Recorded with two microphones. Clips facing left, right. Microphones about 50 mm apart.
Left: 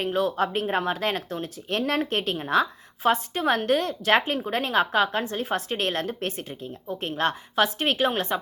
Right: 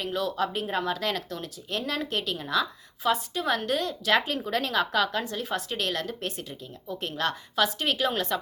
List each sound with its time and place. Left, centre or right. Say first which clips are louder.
0.0 s speech: left 4 dB; left